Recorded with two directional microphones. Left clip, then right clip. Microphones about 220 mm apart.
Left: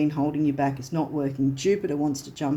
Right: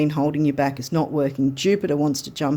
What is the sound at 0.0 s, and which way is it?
Speech, 50° right (ahead or behind).